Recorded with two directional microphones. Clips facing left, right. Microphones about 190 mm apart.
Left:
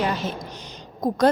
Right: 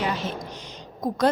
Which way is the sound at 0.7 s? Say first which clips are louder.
Left 4 dB; 45° left (ahead or behind).